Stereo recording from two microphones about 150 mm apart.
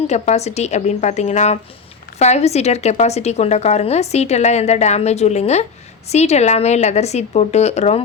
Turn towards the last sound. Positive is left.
turn(degrees=50)  # may be behind; listen again after turning